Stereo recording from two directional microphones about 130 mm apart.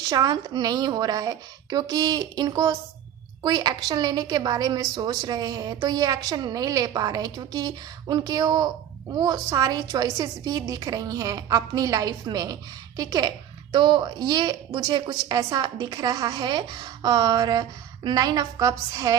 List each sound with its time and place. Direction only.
0.1 s a woman's voice: 30° right (ahead or behind)